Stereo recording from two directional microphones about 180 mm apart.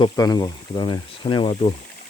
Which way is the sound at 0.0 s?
20° left (ahead or behind).